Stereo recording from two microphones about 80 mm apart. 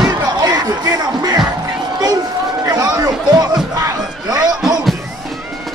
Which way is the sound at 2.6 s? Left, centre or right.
Right.